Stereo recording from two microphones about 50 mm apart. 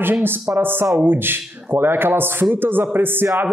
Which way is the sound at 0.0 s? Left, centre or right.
Right.